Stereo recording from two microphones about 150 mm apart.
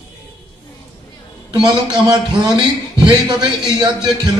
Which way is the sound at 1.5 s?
30° right (ahead or behind).